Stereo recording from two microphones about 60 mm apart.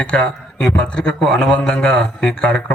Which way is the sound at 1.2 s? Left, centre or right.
Centre.